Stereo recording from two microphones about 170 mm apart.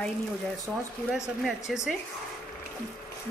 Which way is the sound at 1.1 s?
Centre (ahead or behind).